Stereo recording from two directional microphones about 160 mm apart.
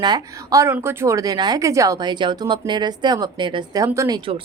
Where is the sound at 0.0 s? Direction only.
25° right (ahead or behind).